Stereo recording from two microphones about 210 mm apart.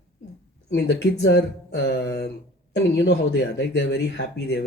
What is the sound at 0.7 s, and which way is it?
Speech, 55° left (ahead or behind).